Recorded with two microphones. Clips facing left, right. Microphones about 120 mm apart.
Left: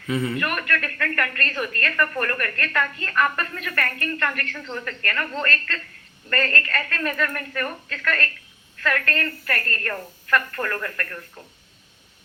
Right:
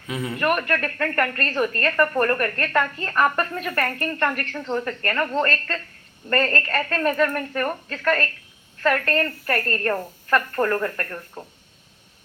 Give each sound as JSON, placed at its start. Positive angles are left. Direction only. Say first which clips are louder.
{"t": 0.3, "sound": "a woman's voice", "louder": "right 4 dB", "side_deg": -30}